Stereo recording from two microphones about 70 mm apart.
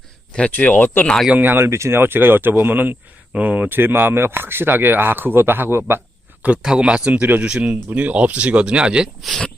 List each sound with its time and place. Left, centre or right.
0.3 s speech: centre
1.3 s speech: right
6.6 s speech: centre
9.2 s speech: centre